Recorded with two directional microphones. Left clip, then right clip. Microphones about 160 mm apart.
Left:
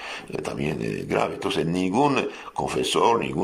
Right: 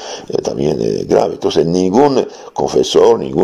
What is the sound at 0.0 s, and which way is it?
Speech, 40° right (ahead or behind).